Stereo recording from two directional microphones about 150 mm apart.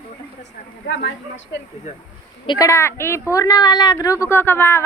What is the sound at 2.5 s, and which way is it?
Speech, 20° left (ahead or behind).